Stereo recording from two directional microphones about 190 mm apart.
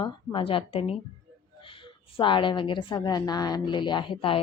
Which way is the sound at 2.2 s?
25° left (ahead or behind).